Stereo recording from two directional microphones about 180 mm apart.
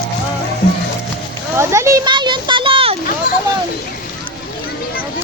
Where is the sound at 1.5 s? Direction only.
15° right (ahead or behind); by 3.0 s 30° right (ahead or behind).